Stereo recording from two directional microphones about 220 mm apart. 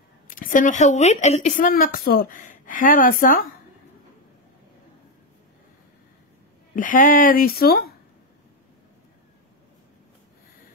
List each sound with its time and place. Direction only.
0.3 s speech: 40° left (ahead or behind)
6.7 s speech: 40° left (ahead or behind)